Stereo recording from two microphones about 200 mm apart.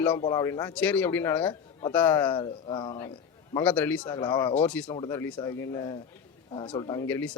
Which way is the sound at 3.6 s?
10° left (ahead or behind).